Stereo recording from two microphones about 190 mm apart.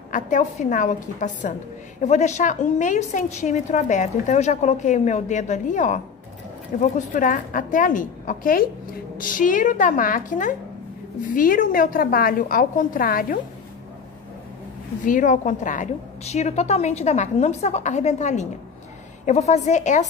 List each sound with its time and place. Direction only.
0.1 s a woman's voice: 40° left (ahead or behind)
15.0 s a woman's voice: 40° left (ahead or behind)